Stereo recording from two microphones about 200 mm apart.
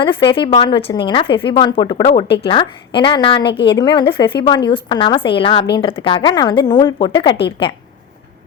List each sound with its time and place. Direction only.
0.0 s a woman's voice: 25° left (ahead or behind)